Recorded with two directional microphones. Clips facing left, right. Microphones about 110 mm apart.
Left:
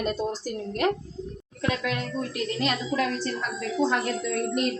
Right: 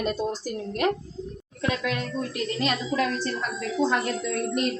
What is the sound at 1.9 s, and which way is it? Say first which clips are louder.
Speech: right 1 dB; centre (ahead or behind).